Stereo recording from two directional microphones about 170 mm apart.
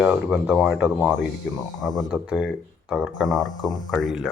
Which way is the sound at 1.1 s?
5° left (ahead or behind).